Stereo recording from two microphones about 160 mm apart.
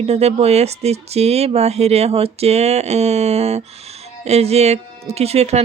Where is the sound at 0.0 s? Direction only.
40° right (ahead or behind).